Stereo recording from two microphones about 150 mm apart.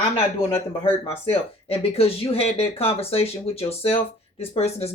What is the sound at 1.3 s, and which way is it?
Speech, 40° left (ahead or behind).